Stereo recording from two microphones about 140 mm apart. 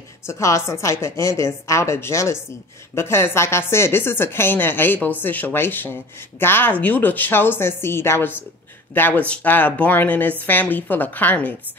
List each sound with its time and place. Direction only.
0.3 s a woman's voice: 20° left (ahead or behind)